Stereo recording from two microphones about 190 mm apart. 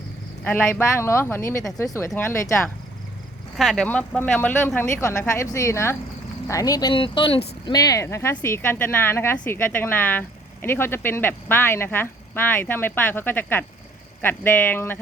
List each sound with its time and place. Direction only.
0.4 s speech: 5° left (ahead or behind)
3.6 s speech: centre (ahead or behind)